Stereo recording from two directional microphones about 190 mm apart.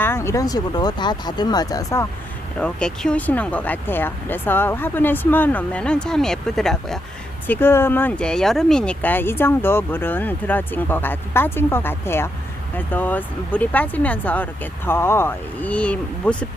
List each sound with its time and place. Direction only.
0.0 s speech: 15° left (ahead or behind)
2.6 s speech: 5° left (ahead or behind)